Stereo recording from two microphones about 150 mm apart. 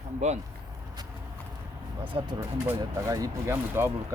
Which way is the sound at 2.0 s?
30° right (ahead or behind).